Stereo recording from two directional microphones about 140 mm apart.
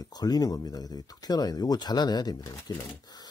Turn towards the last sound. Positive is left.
turn(degrees=30)  # may be behind; listen again after turning